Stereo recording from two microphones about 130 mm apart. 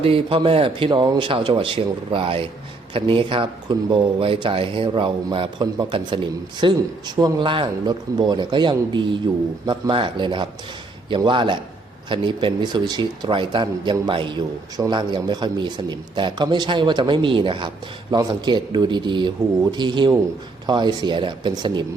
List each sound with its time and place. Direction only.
0.0 s speech: 45° right (ahead or behind)
0.9 s speech: 30° right (ahead or behind)